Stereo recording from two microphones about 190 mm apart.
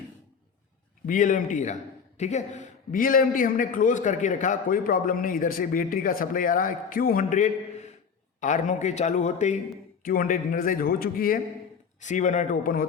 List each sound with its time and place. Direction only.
1.0 s a man's voice: 45° left (ahead or behind)